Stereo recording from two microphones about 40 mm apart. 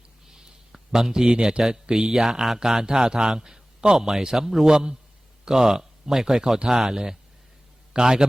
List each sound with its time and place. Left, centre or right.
0.3 s a sound: centre
0.9 s a man's voice: centre
6.6 s a man's voice: right